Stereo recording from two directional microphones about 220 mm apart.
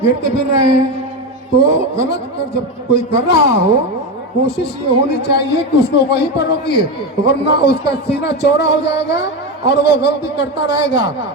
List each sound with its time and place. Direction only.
0.0 s speech: 50° left (ahead or behind)